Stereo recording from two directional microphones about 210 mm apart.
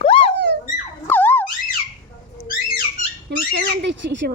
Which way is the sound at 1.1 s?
10° left (ahead or behind).